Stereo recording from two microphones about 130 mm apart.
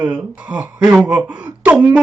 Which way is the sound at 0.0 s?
10° right (ahead or behind).